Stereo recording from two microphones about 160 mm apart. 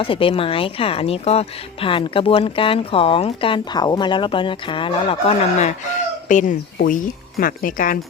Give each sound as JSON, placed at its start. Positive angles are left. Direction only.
{"t": 0.0, "sound": "speech", "side_deg": 35}